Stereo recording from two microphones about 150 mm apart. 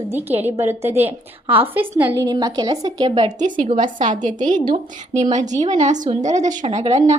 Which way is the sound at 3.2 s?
55° right (ahead or behind).